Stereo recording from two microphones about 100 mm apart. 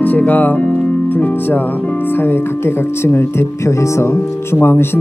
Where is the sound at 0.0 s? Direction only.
15° left (ahead or behind).